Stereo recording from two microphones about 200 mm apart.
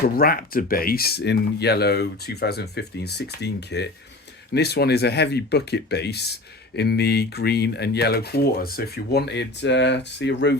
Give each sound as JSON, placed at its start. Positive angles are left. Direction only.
{"t": 0.2, "sound": "speech", "side_deg": 45}